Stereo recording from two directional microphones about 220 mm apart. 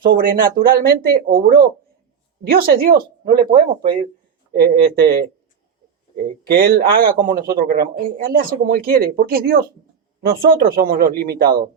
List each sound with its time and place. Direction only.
0.0 s a man's voice: 40° right (ahead or behind)
6.4 s a man's voice: 45° right (ahead or behind)